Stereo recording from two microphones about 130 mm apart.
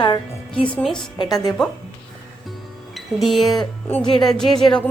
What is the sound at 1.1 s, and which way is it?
Speech, 30° left (ahead or behind).